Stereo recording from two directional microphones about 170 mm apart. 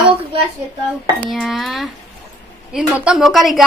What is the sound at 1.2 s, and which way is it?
A woman's voice, centre (ahead or behind).